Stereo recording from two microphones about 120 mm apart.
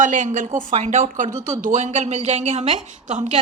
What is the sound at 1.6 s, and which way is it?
A woman's voice, 75° right (ahead or behind).